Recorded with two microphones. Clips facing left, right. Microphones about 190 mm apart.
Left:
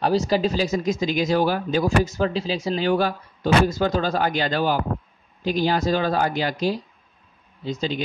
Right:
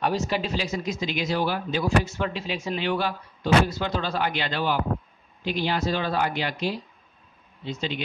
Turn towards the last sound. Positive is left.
turn(degrees=40)  # may be behind; listen again after turning